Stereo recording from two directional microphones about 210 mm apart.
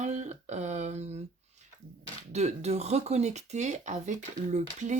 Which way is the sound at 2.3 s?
30° right (ahead or behind).